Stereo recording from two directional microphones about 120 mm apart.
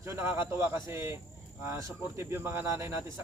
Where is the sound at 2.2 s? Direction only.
20° right (ahead or behind).